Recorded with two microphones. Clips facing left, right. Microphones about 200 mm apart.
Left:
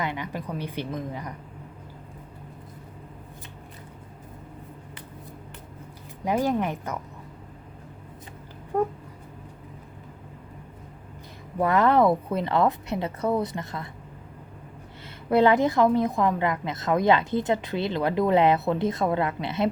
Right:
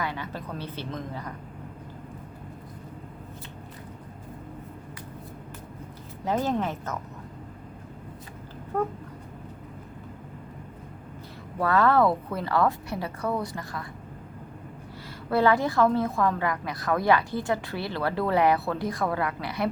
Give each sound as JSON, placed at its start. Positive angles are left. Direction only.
{"t": 0.0, "sound": "a woman's voice", "side_deg": 15}
{"t": 6.2, "sound": "a woman's voice", "side_deg": 10}
{"t": 8.7, "sound": "a woman's voice", "side_deg": 15}
{"t": 11.6, "sound": "a woman's voice", "side_deg": 20}
{"t": 15.3, "sound": "a woman's voice", "side_deg": 20}